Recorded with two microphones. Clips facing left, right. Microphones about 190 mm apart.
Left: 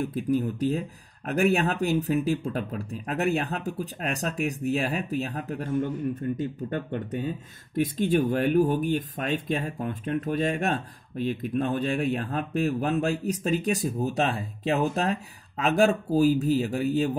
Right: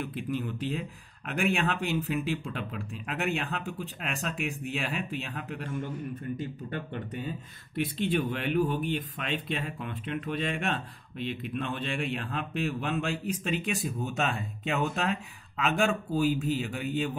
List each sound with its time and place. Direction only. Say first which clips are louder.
0.0 s speech: left 7 dB; 40° left (ahead or behind)